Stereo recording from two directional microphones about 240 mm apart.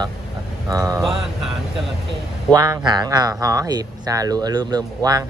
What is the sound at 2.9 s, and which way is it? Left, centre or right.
Speech, centre.